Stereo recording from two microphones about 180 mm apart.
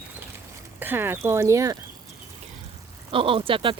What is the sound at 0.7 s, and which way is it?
Speech, 10° right (ahead or behind).